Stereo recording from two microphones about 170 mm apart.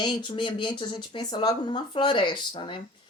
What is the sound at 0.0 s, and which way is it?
Speech, 25° left (ahead or behind).